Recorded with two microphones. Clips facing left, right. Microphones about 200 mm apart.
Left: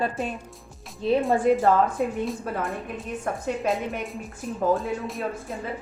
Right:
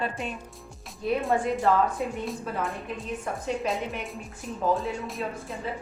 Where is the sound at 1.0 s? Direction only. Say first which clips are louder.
Left 5 dB; 25° left (ahead or behind).